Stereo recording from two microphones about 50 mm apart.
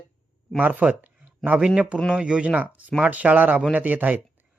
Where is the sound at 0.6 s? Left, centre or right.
Right.